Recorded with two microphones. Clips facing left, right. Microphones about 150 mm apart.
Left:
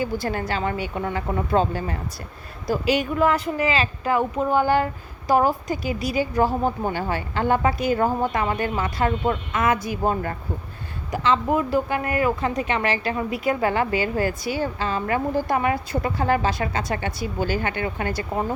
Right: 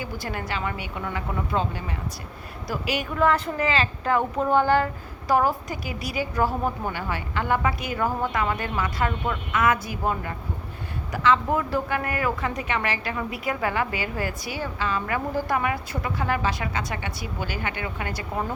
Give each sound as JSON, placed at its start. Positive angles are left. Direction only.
{"t": 0.0, "sound": "speech", "side_deg": 35}
{"t": 2.6, "sound": "a woman's voice", "side_deg": 25}
{"t": 3.2, "sound": "a woman's voice", "side_deg": 10}
{"t": 9.7, "sound": "speech", "side_deg": 15}
{"t": 11.1, "sound": "a woman's voice", "side_deg": 25}